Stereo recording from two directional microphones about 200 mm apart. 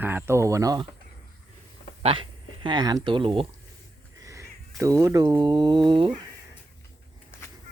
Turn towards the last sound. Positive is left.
turn(degrees=-25)  # may be behind; listen again after turning